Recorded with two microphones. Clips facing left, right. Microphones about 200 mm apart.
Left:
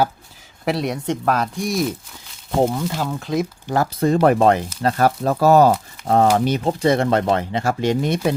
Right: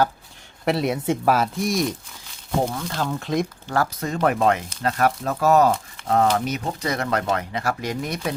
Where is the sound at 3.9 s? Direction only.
35° left (ahead or behind).